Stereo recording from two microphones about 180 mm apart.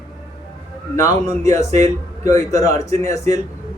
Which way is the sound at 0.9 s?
15° left (ahead or behind).